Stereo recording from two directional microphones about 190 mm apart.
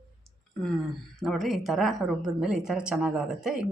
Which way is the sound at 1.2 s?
Centre (ahead or behind).